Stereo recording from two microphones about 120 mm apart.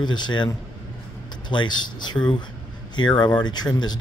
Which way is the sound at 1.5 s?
40° left (ahead or behind).